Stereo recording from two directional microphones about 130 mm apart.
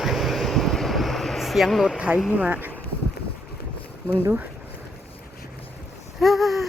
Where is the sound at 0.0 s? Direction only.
Centre (ahead or behind).